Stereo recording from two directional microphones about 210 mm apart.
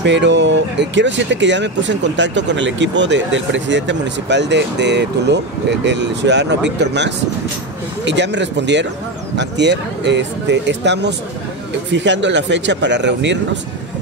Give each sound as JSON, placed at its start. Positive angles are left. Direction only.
{"t": 0.0, "sound": "speech", "side_deg": -55}